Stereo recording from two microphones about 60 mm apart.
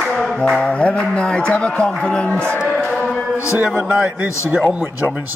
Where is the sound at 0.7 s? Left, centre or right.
Left.